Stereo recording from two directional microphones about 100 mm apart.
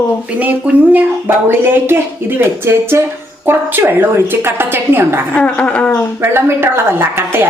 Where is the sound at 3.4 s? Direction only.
20° right (ahead or behind).